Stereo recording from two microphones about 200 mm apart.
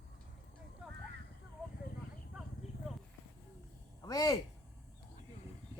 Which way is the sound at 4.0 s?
20° left (ahead or behind).